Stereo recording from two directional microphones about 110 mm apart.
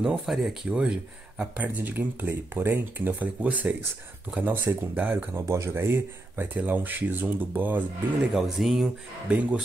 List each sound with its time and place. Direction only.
0.0 s speech: centre (ahead or behind)
8.4 s speech: centre (ahead or behind)